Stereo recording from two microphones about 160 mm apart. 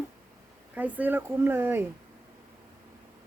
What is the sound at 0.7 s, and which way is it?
Speech, 10° right (ahead or behind).